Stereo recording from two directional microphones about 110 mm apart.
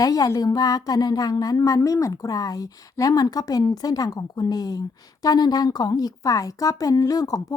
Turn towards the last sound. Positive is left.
turn(degrees=35)  # may be behind; listen again after turning